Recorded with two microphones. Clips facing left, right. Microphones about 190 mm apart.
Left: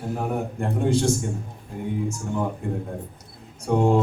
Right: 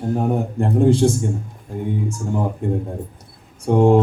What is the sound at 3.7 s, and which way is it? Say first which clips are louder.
Speech: right 5 dB; 30° right (ahead or behind).